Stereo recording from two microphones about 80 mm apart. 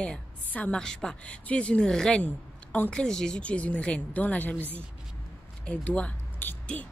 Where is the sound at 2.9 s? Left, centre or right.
Centre.